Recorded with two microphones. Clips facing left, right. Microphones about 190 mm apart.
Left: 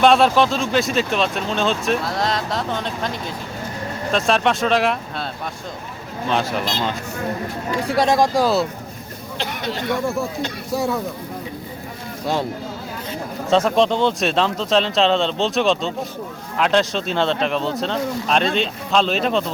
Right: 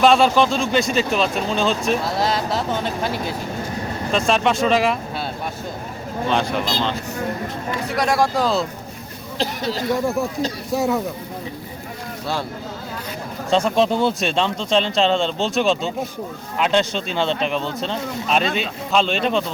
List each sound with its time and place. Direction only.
0.0 s speech: centre (ahead or behind)
6.2 s speech: centre (ahead or behind)
7.9 s speech: 25° left (ahead or behind)
9.4 s speech: 35° right (ahead or behind)
10.8 s speech: 20° right (ahead or behind)
13.5 s speech: centre (ahead or behind)